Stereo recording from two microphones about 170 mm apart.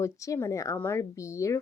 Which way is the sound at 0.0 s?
15° left (ahead or behind).